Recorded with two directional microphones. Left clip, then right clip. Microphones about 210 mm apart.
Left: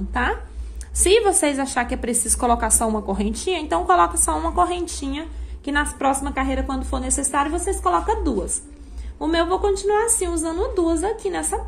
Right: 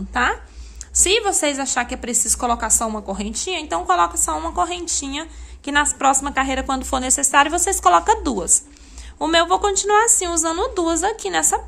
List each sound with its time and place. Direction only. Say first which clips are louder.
0.1 s a woman's voice: right 4 dB; 15° right (ahead or behind)
5.7 s a woman's voice: right 4 dB; 20° right (ahead or behind)